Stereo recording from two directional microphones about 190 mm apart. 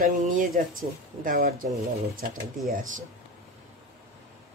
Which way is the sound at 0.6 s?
45° right (ahead or behind).